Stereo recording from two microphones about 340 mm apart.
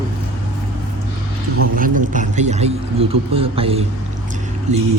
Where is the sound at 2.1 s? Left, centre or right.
Right.